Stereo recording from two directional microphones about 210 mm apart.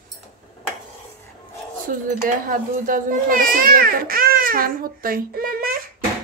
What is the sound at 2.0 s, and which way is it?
A child's voice, 40° right (ahead or behind).